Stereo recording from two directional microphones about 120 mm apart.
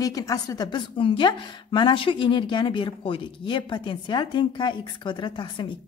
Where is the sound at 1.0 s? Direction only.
45° left (ahead or behind).